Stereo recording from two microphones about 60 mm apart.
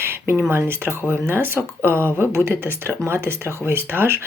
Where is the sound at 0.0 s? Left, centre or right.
Right.